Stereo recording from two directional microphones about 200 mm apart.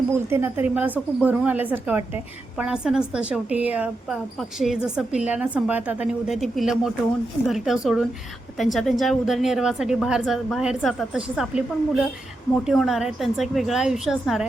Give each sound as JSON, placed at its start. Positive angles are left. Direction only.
{"t": 0.1, "sound": "a woman's voice", "side_deg": -15}